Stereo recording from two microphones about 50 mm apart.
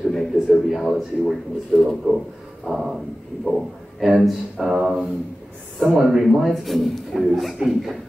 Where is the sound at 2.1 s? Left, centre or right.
Right.